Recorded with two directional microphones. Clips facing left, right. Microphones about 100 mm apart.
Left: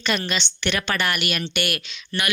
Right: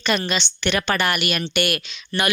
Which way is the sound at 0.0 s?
25° right (ahead or behind).